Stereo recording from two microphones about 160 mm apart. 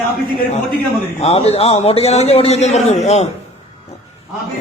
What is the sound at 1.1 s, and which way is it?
A man's voice, 40° left (ahead or behind).